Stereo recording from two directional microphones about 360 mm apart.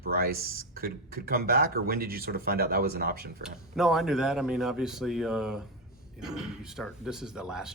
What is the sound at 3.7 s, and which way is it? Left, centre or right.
Speech, centre.